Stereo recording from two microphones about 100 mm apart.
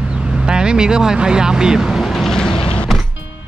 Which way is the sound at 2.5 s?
65° left (ahead or behind).